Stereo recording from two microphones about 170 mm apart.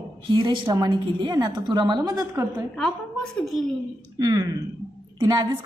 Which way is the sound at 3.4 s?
Centre (ahead or behind).